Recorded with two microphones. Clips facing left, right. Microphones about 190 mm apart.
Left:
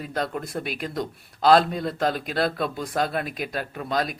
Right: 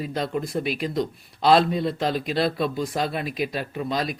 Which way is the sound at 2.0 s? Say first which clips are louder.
Left 2 dB; 50° left (ahead or behind).